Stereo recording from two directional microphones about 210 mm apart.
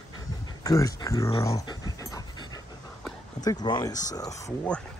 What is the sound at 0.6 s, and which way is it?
Dog, 15° left (ahead or behind).